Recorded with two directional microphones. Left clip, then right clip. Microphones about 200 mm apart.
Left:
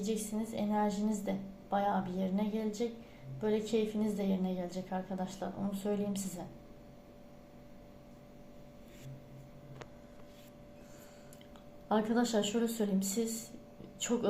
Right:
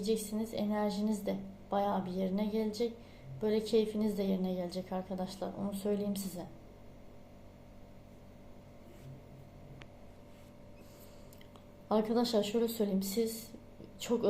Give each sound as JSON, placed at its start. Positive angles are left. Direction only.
{"t": 0.0, "sound": "a woman's voice", "side_deg": -20}
{"t": 11.9, "sound": "a woman's voice", "side_deg": -10}